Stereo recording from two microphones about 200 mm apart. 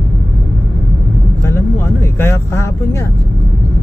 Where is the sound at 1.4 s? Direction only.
15° left (ahead or behind).